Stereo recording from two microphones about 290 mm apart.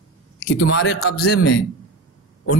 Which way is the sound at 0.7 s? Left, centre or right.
Left.